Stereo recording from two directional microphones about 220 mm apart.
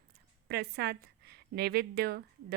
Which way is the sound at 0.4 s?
45° right (ahead or behind).